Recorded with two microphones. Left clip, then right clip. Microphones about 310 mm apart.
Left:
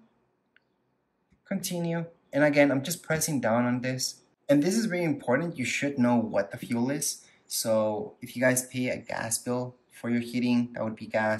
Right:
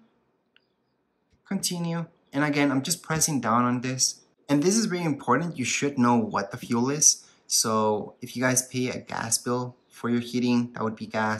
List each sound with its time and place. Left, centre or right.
1.5 s speech: centre